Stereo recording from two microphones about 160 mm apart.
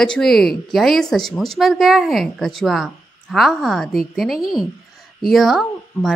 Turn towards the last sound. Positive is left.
turn(degrees=0)  # may be behind; listen again after turning